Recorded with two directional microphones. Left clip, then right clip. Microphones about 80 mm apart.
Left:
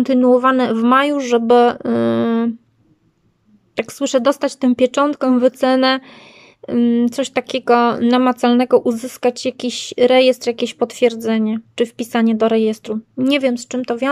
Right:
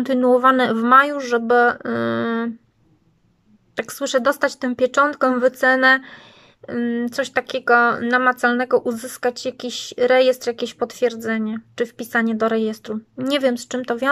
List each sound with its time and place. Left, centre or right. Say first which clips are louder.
0.0 s speech: left 2 dB; centre
0.8 s a woman's voice: right 1 dB; left
3.7 s a woman's voice: left 3 dB; left